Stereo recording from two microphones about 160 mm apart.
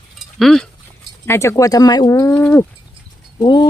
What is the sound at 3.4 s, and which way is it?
Speech, 30° left (ahead or behind).